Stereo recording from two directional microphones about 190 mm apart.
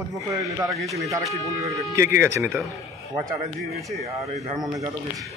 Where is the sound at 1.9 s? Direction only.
15° right (ahead or behind).